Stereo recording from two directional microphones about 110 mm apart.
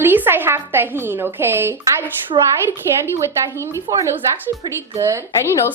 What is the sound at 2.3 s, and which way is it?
Speech, 50° right (ahead or behind).